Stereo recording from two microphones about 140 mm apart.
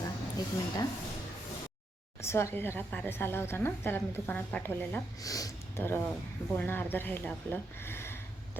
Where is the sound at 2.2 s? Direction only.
20° left (ahead or behind).